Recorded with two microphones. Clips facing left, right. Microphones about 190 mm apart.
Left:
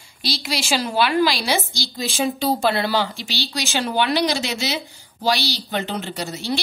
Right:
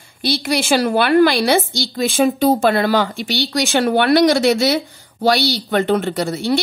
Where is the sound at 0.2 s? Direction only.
55° right (ahead or behind).